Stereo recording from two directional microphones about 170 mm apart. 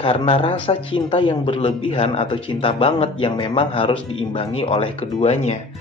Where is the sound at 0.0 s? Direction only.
30° left (ahead or behind).